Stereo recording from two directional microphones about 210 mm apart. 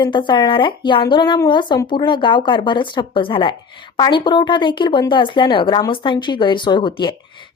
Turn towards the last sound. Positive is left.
turn(degrees=20)  # may be behind; listen again after turning